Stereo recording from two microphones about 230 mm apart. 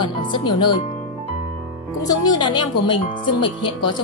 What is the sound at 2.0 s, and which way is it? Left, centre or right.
A woman's voice, centre.